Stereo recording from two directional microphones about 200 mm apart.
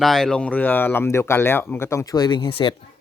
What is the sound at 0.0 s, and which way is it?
Speech, centre (ahead or behind).